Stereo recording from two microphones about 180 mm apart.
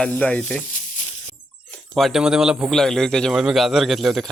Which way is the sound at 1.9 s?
Centre (ahead or behind).